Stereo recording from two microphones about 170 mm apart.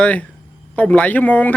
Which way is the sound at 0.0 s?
10° left (ahead or behind).